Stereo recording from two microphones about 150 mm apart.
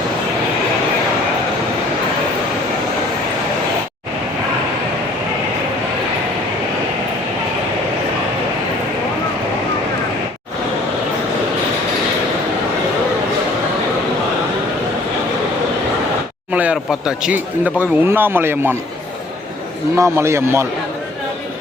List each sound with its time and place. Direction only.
16.5 s speech: 10° right (ahead or behind)
20.0 s speech: 15° right (ahead or behind)